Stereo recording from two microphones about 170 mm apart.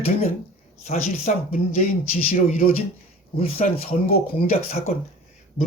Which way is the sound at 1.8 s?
55° left (ahead or behind).